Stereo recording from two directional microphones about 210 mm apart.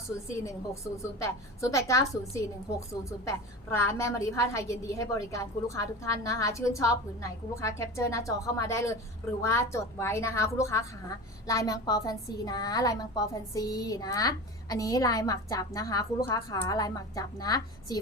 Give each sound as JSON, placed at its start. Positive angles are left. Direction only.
{"t": 0.3, "sound": "a woman's voice", "side_deg": 15}